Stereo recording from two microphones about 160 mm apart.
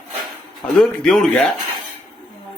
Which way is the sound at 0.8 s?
5° left (ahead or behind).